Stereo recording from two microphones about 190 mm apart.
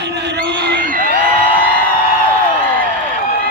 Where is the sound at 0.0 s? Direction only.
60° right (ahead or behind).